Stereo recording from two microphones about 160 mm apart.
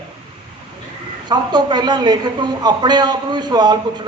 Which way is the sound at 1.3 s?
25° right (ahead or behind).